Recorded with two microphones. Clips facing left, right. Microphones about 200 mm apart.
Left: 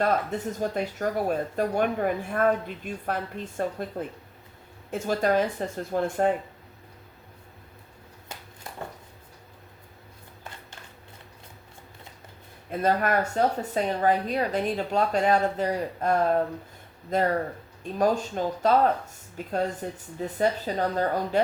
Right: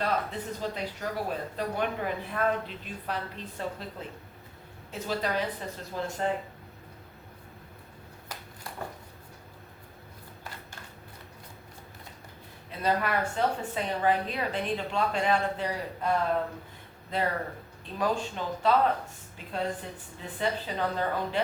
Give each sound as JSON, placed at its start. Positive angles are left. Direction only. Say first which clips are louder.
{"t": 0.0, "sound": "speech", "louder": "left 5 dB", "side_deg": 45}
{"t": 4.9, "sound": "speech", "louder": "left 7 dB", "side_deg": 50}
{"t": 12.8, "sound": "speech", "louder": "left 4 dB", "side_deg": 45}